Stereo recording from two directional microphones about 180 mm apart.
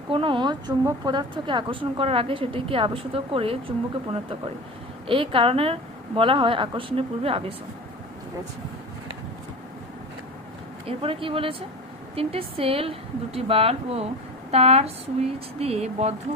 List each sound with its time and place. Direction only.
0.1 s speech: 30° right (ahead or behind)
5.0 s speech: 30° right (ahead or behind)
10.8 s speech: 30° right (ahead or behind)